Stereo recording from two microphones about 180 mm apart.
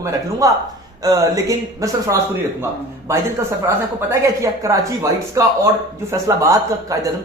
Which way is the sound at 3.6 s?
15° right (ahead or behind).